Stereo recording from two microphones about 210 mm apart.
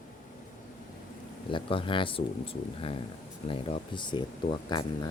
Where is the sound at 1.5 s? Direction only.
25° left (ahead or behind).